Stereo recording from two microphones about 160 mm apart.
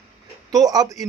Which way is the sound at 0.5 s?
25° right (ahead or behind).